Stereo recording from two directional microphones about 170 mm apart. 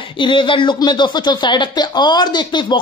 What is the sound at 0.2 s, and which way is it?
Speech, 30° left (ahead or behind).